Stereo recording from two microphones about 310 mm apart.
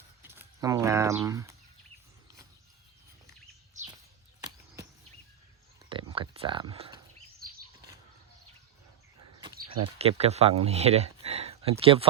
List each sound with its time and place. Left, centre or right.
0.2 s speech: centre
5.9 s a sound: centre
10.0 s speech: centre